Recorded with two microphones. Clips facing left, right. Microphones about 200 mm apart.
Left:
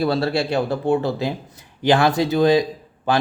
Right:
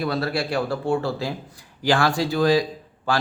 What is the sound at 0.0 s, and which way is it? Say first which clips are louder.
A man's voice: left 4 dB; 30° left (ahead or behind).